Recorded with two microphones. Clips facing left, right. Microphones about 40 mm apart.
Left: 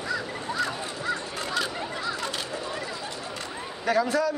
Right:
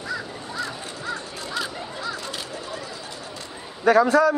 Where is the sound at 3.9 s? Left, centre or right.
Right.